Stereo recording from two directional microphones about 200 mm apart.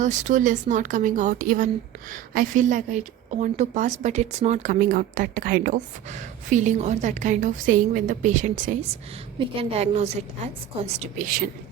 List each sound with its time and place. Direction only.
0.0 s a woman's voice: 40° right (ahead or behind)